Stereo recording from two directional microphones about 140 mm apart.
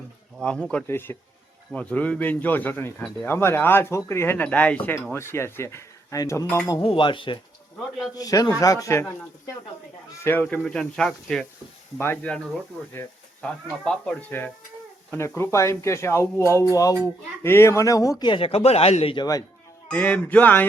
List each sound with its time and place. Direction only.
0.3 s speech: 5° left (ahead or behind); by 6.8 s 25° left (ahead or behind)
6.8 s speech: 35° left (ahead or behind)
8.1 s speech: 25° left (ahead or behind)
10.2 s speech: 10° left (ahead or behind)
12.9 s sizzle: 15° left (ahead or behind)
13.8 s speech: 5° left (ahead or behind)
15.4 s speech: 20° left (ahead or behind); by 19.2 s 45° left (ahead or behind)
19.2 s speech: 25° left (ahead or behind)
19.9 s speech: 10° left (ahead or behind)